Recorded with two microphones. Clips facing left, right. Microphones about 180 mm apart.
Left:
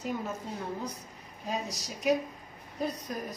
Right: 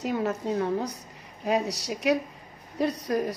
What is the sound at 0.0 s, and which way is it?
A woman's voice, 75° right (ahead or behind).